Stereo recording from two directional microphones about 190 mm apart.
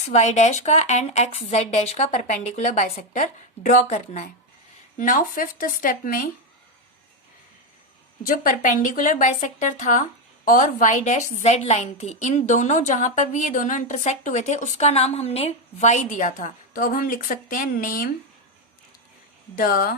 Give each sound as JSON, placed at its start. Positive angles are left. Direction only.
{"t": 0.1, "sound": "a woman's voice", "side_deg": 35}
{"t": 8.2, "sound": "a woman's voice", "side_deg": 45}
{"t": 19.5, "sound": "speech", "side_deg": 50}